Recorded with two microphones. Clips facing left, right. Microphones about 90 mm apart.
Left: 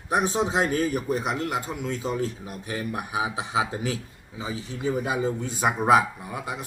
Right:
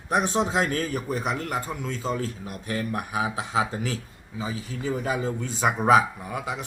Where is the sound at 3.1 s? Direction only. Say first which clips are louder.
Left 1 dB; 15° left (ahead or behind).